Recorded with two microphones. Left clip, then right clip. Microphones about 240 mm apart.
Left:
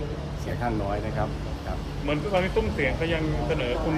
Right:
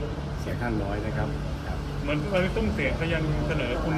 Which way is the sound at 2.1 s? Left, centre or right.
Left.